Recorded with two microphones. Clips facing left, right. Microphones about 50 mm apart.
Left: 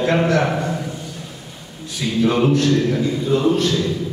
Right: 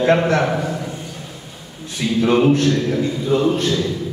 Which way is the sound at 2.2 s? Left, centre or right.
Right.